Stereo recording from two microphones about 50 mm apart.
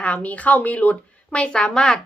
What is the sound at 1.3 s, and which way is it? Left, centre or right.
Speech, centre.